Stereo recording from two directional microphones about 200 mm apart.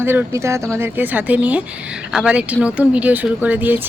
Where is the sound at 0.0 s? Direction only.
10° right (ahead or behind).